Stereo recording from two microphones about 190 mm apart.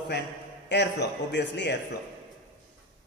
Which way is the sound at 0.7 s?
60° left (ahead or behind).